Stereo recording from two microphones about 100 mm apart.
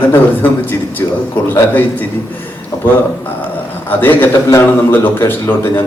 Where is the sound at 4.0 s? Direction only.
20° left (ahead or behind).